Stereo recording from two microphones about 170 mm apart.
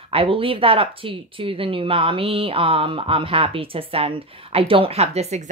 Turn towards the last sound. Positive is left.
turn(degrees=-40)  # may be behind; listen again after turning